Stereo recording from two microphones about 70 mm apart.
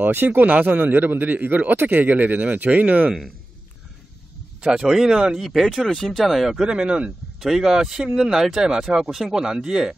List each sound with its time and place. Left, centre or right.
0.0 s speech: right
4.6 s speech: centre